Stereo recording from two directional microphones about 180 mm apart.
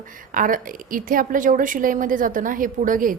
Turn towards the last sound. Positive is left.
turn(degrees=-50)  # may be behind; listen again after turning